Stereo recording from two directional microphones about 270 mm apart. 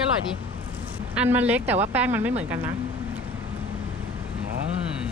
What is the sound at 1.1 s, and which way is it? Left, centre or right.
Speech, centre.